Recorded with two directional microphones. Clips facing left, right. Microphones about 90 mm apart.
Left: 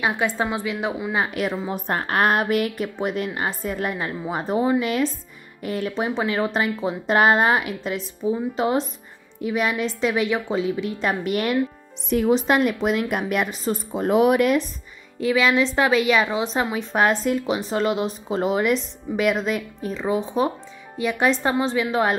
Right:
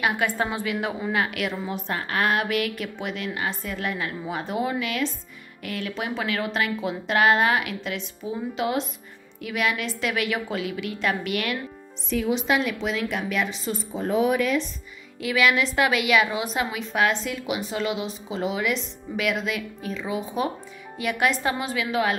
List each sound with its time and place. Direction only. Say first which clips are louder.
0.0 s a woman's voice: left 2 dB; 20° left (ahead or behind)
1.1 s a woman's voice: left 2 dB; 30° left (ahead or behind)
12.1 s a woman's voice: left 5 dB; 55° left (ahead or behind)
13.9 s speech: left 5 dB; 65° left (ahead or behind)
15.2 s a woman's voice: left 3 dB; 30° left (ahead or behind)